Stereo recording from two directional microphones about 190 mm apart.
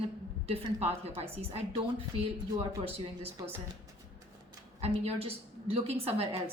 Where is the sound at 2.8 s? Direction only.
30° right (ahead or behind).